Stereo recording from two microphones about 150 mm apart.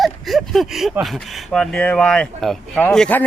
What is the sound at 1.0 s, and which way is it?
Speech, centre (ahead or behind).